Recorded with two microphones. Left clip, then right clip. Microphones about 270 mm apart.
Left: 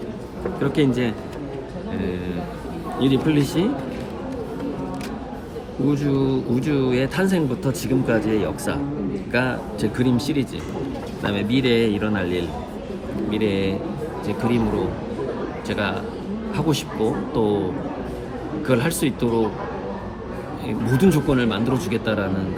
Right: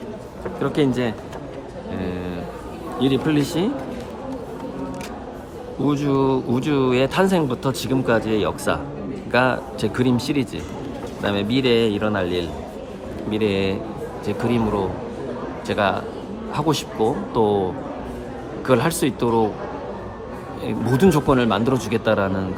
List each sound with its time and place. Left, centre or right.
0.6 s speech: centre
3.0 s speech: centre
5.9 s speech: centre
15.6 s speech: centre
18.6 s speech: centre
20.7 s speech: centre